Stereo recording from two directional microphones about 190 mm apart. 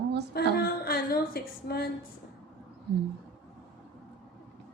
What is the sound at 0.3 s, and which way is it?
A woman's voice, 55° left (ahead or behind).